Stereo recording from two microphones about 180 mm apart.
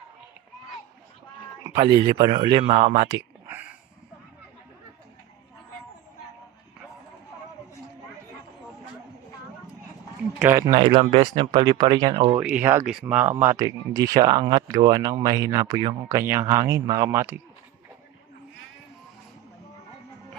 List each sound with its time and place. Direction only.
1.6 s speech: 20° right (ahead or behind); by 3.2 s 35° right (ahead or behind)
10.8 s speech: 30° right (ahead or behind)
12.4 s speech: 5° right (ahead or behind)
16.8 s speech: 30° right (ahead or behind)
17.1 s speech: 15° right (ahead or behind)